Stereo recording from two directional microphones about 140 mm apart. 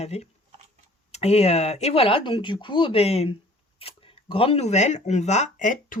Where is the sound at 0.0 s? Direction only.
50° left (ahead or behind).